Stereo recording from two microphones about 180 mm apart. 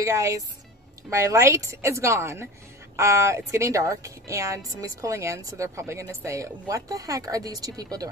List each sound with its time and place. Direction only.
0.0 s a woman's voice: 15° right (ahead or behind)